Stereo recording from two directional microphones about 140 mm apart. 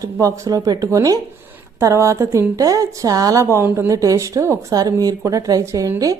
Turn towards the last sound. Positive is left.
turn(degrees=-25)  # may be behind; listen again after turning